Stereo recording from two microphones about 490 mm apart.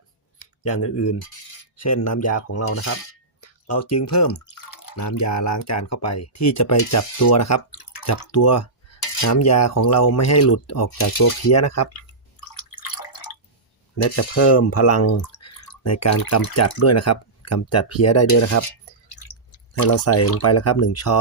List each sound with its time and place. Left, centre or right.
0.6 s speech: left
4.3 s cutlery: left
7.7 s drip: left
8.0 s cutlery: left
12.5 s drip: left
14.0 s speech: left